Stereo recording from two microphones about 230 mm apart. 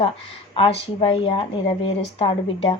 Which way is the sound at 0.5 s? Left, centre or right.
Left.